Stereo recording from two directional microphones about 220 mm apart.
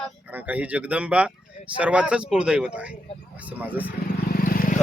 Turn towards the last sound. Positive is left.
turn(degrees=40)  # may be behind; listen again after turning